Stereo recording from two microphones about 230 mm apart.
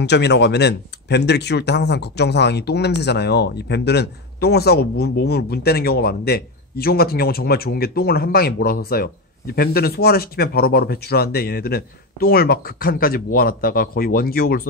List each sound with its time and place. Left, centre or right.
0.0 s speech: left